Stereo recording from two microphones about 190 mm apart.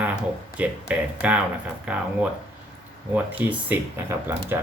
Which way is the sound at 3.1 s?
10° right (ahead or behind).